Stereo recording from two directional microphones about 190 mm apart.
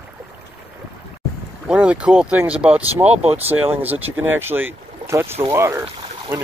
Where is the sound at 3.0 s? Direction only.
35° right (ahead or behind).